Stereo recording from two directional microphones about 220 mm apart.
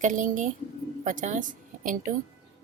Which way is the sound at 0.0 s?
35° right (ahead or behind).